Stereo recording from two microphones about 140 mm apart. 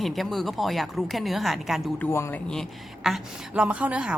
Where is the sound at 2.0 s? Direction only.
15° left (ahead or behind).